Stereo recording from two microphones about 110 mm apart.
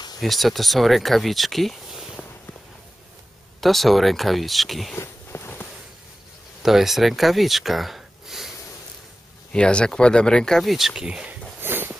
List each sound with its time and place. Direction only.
0.2 s speech: centre (ahead or behind)
3.6 s speech: centre (ahead or behind)
4.9 s a sound: 25° left (ahead or behind)
6.6 s speech: 5° right (ahead or behind)
9.5 s speech: 10° left (ahead or behind); by 11.3 s 10° right (ahead or behind)
11.6 s a sound: 20° right (ahead or behind)